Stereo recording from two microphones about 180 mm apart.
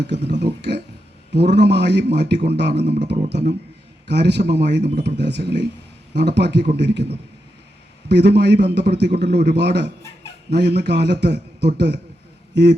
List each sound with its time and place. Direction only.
0.1 s a man's voice: 70° right (ahead or behind)
4.0 s a man's voice: 70° right (ahead or behind)